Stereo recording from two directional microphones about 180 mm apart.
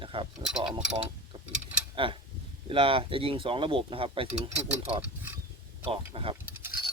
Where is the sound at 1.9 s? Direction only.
30° right (ahead or behind).